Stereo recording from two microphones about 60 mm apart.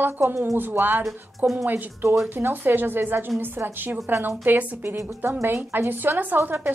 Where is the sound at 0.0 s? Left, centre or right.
Right.